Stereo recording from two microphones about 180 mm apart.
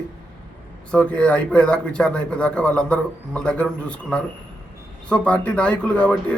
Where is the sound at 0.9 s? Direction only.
5° left (ahead or behind).